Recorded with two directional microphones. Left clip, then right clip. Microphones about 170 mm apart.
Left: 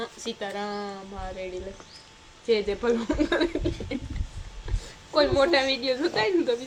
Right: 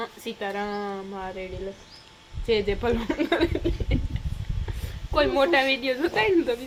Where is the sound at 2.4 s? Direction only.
15° right (ahead or behind).